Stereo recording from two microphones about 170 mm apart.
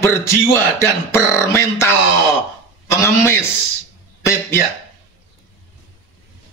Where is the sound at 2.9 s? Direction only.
15° left (ahead or behind).